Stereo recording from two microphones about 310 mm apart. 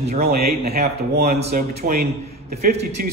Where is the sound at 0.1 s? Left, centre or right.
Right.